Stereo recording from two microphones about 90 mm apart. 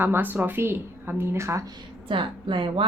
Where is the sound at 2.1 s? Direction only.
65° right (ahead or behind).